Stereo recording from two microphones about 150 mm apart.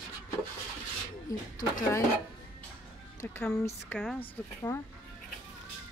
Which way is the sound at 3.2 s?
10° left (ahead or behind).